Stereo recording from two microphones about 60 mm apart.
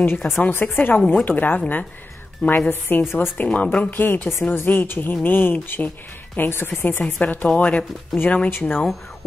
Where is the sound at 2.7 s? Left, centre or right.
Left.